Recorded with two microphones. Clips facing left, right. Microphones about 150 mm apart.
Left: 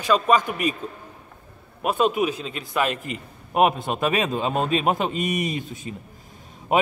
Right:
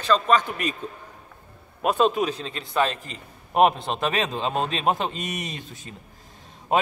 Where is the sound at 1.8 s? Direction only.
5° left (ahead or behind).